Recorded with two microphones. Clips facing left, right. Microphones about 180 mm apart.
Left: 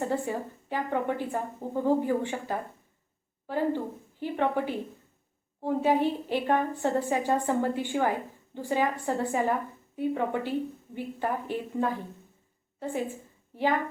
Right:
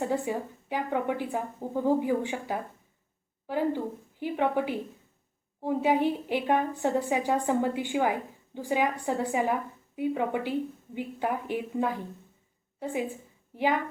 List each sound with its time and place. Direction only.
0.0 s a woman's voice: 10° right (ahead or behind)